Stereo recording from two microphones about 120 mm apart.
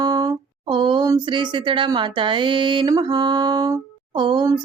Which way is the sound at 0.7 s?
40° right (ahead or behind).